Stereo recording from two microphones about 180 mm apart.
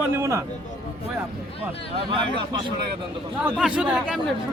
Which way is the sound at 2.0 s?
25° right (ahead or behind).